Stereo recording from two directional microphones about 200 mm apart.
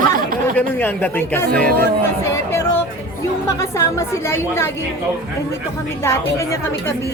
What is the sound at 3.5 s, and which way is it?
A woman's voice, 15° left (ahead or behind).